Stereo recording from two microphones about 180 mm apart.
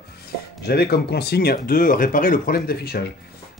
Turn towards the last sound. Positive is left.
turn(degrees=60)  # may be behind; listen again after turning